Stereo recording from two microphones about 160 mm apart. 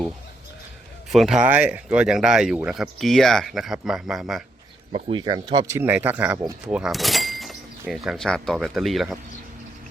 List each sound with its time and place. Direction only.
1.1 s speech: centre (ahead or behind)
4.9 s speech: 35° right (ahead or behind); by 9.1 s centre (ahead or behind)